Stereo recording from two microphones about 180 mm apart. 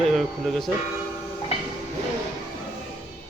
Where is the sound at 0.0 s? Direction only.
Centre (ahead or behind).